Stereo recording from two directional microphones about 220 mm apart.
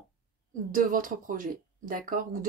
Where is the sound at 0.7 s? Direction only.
35° right (ahead or behind).